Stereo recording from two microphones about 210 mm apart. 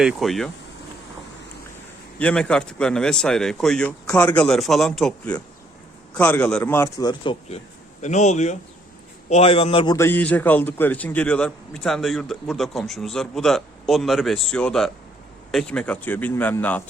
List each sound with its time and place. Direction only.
0.0 s a man's voice: centre (ahead or behind)
2.1 s a man's voice: 5° left (ahead or behind); by 7.6 s 20° left (ahead or behind)
8.0 s a man's voice: 35° left (ahead or behind); by 16.8 s 10° left (ahead or behind)